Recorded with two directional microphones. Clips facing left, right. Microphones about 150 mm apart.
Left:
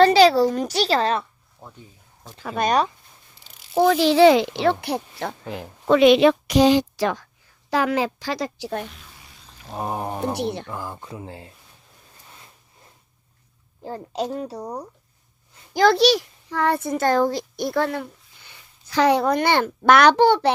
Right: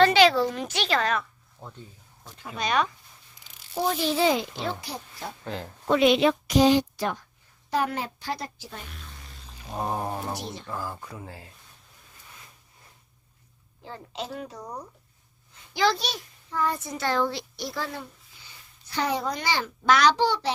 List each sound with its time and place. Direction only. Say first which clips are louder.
0.0 s a child's voice: left 5 dB; 35° left (ahead or behind)
1.6 s speech: even; 5° left (ahead or behind)
2.6 s speech: left 7 dB; 55° left (ahead or behind)
3.8 s a child's voice: left 10 dB; 90° left; by 5.3 s 65° left (ahead or behind)
5.5 s a sound: left 2 dB; 15° left (ahead or behind)
5.9 s a woman's voice: left 6 dB; 80° left
9.0 s frying: right 1 dB; 5° left (ahead or behind)
9.7 s a sound: left 2 dB; 10° left (ahead or behind)
10.3 s speech: left 10 dB; 65° left (ahead or behind)
10.7 s speech: left 2 dB; 20° left (ahead or behind)
13.8 s a child's voice: left 9 dB; 40° left (ahead or behind)
15.7 s a child's voice: left 7 dB; 45° left (ahead or behind)
16.0 s a child's voice: left 17 dB; 80° left; by 20.5 s 60° left (ahead or behind)